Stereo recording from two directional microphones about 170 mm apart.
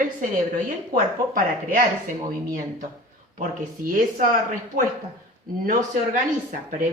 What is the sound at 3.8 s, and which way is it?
Speech, 55° right (ahead or behind).